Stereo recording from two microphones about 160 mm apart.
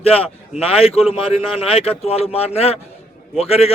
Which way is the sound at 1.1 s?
35° left (ahead or behind).